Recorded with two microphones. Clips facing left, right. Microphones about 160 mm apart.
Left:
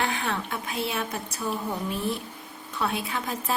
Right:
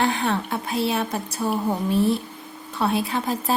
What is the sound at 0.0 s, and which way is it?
Speech, 35° right (ahead or behind).